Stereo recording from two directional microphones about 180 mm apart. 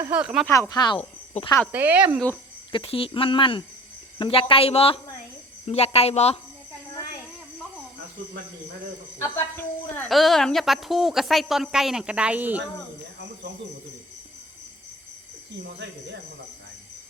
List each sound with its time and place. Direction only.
0.0 s speech: 5° right (ahead or behind)
0.4 s speech: 15° left (ahead or behind)
1.7 s speech: 10° right (ahead or behind)
2.7 s speech: 30° left (ahead or behind)
9.1 s a woman's voice: 15° left (ahead or behind)
10.1 s speech: centre (ahead or behind)